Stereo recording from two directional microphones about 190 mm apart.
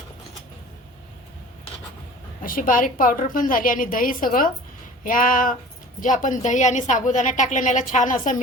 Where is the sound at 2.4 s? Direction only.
45° left (ahead or behind).